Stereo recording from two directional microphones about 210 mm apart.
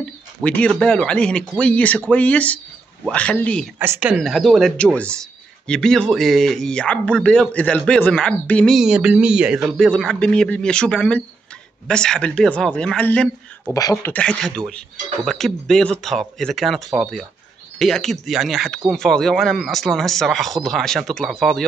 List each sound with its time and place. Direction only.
0.0 s speech: 5° left (ahead or behind)
3.8 s speech: 10° right (ahead or behind)
13.7 s speech: 15° left (ahead or behind)
14.1 s speech: 5° left (ahead or behind)